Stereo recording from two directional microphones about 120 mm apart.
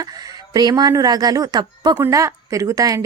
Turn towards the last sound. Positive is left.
turn(degrees=-30)  # may be behind; listen again after turning